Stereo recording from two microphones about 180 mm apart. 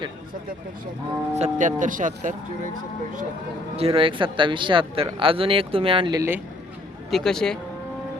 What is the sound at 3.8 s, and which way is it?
Speech, 30° right (ahead or behind).